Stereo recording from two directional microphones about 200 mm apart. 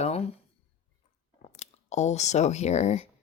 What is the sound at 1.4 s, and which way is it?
Speech, 35° left (ahead or behind).